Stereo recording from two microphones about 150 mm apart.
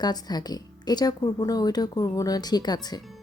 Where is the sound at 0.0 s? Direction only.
25° left (ahead or behind).